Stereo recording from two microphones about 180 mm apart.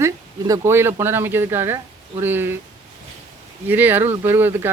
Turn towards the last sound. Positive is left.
turn(degrees=-10)  # may be behind; listen again after turning